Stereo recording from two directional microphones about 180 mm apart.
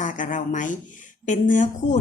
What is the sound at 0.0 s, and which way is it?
A woman's voice, 45° left (ahead or behind).